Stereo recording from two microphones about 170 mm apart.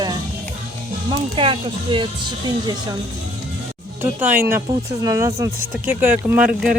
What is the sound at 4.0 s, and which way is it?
Speech, 10° right (ahead or behind).